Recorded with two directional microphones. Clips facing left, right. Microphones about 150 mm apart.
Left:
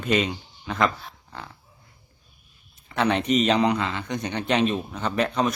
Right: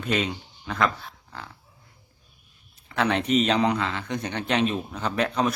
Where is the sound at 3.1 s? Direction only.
10° left (ahead or behind).